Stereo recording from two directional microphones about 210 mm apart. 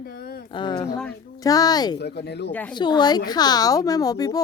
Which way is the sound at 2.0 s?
50° left (ahead or behind).